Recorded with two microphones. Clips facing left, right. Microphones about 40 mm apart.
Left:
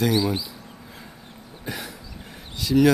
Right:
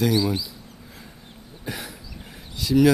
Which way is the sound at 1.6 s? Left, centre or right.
Centre.